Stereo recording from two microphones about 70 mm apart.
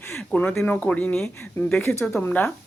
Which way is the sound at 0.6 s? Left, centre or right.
Left.